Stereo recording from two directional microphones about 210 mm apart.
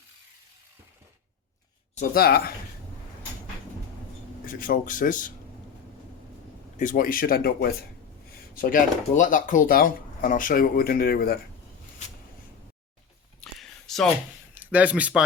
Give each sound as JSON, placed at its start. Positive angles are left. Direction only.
{"t": 2.0, "sound": "speech", "side_deg": 45}
{"t": 4.6, "sound": "speech", "side_deg": 40}
{"t": 6.7, "sound": "speech", "side_deg": 40}
{"t": 13.4, "sound": "a sound", "side_deg": 0}
{"t": 14.5, "sound": "speech", "side_deg": -5}